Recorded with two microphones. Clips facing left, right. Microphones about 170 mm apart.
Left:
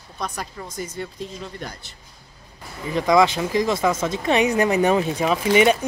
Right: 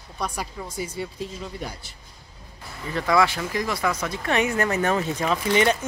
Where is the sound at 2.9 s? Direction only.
15° left (ahead or behind).